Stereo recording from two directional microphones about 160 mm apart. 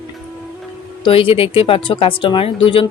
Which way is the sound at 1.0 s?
35° left (ahead or behind).